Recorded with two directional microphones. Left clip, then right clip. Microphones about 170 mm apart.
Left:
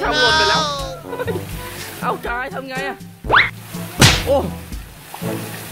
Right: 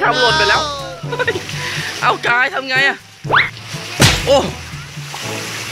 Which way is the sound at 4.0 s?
Centre (ahead or behind).